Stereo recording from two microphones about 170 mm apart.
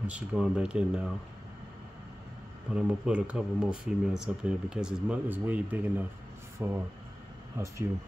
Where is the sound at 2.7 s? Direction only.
5° right (ahead or behind).